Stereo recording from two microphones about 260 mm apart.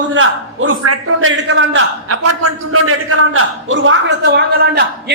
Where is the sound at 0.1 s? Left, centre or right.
Right.